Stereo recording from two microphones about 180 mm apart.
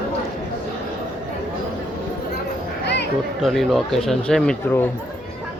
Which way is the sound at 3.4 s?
Centre (ahead or behind).